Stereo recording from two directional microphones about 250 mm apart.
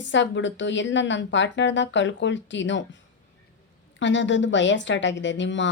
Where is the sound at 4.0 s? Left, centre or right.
Left.